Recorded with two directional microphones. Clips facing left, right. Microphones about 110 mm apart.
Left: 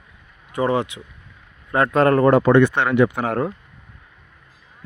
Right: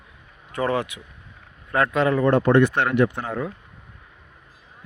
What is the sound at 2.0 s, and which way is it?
Speech, 65° left (ahead or behind).